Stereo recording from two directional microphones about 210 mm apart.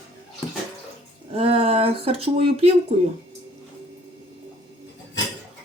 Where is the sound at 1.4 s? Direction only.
25° right (ahead or behind).